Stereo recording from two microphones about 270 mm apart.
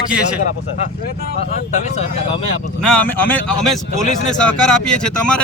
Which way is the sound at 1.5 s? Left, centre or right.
Left.